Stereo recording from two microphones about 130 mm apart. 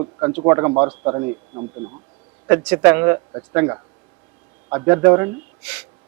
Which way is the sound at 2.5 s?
20° right (ahead or behind).